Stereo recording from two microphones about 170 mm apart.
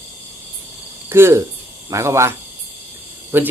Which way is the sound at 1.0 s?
15° right (ahead or behind).